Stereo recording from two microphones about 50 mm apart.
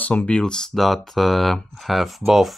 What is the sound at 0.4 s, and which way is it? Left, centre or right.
Speech, centre.